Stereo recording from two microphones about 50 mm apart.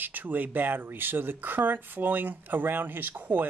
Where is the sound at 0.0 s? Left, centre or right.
Right.